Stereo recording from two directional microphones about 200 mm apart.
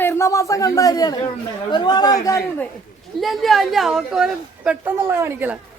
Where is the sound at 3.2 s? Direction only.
Centre (ahead or behind).